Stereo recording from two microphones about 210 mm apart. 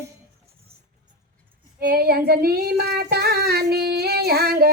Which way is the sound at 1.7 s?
45° right (ahead or behind).